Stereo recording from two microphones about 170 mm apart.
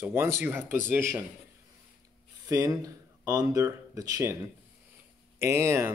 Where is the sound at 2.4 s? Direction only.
20° right (ahead or behind).